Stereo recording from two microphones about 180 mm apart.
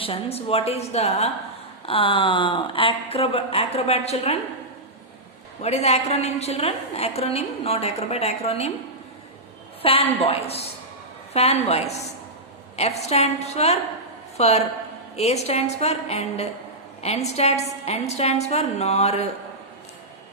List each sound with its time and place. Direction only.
0.0 s a woman's voice: 35° left (ahead or behind)
5.6 s a woman's voice: 35° left (ahead or behind)
9.8 s a woman's voice: 35° left (ahead or behind)